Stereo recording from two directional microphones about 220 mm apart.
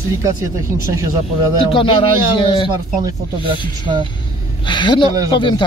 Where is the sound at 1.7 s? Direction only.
25° left (ahead or behind).